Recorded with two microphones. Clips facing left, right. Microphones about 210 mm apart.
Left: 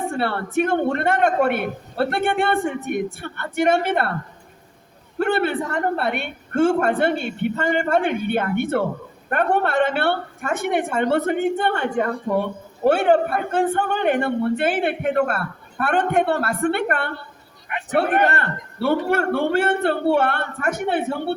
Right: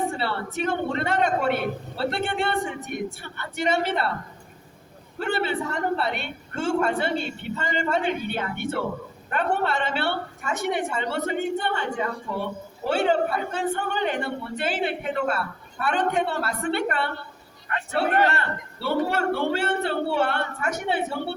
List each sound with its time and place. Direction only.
0.1 s a woman's voice: 55° left (ahead or behind)
5.2 s a woman's voice: 55° left (ahead or behind)
17.7 s a man's voice: 20° left (ahead or behind)
18.3 s a man's voice: 55° left (ahead or behind)